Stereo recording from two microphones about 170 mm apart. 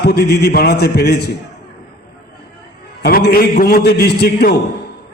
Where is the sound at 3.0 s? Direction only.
65° left (ahead or behind).